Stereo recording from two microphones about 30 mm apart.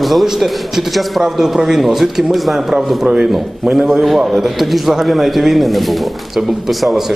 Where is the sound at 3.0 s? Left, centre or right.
Right; by 5.9 s centre.